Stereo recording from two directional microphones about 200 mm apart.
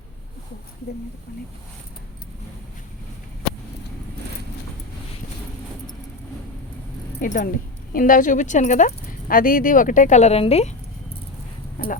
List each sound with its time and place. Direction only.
7.2 s speech: 40° left (ahead or behind)
11.8 s speech: 45° left (ahead or behind)